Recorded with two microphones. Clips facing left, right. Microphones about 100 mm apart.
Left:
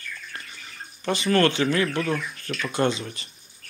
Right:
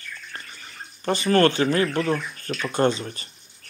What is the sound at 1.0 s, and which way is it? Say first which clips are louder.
Speech: right 2 dB; 40° right (ahead or behind).